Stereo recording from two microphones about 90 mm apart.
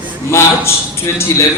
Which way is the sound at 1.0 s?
30° left (ahead or behind).